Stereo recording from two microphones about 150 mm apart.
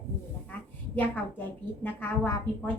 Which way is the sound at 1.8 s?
10° left (ahead or behind).